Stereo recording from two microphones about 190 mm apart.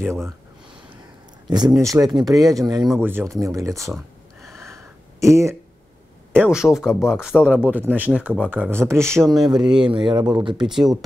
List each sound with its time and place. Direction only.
0.0 s speech: 15° right (ahead or behind)
1.7 s speech: 15° right (ahead or behind)
4.6 s a sound: 15° right (ahead or behind)
6.3 s speech: 5° right (ahead or behind)
9.2 s speech: centre (ahead or behind)
9.9 s speech: 25° right (ahead or behind)
10.6 s speech: centre (ahead or behind)